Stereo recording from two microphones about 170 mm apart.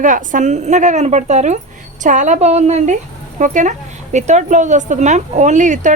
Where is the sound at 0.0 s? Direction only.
50° right (ahead or behind).